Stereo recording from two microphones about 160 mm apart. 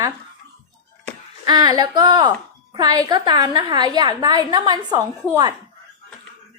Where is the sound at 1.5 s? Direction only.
25° right (ahead or behind).